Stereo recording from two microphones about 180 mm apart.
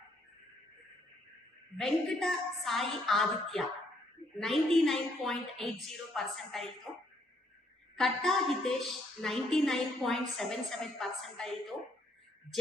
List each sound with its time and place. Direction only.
1.8 s a woman's voice: centre (ahead or behind)